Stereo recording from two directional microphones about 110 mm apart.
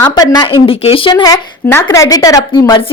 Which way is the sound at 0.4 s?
55° left (ahead or behind).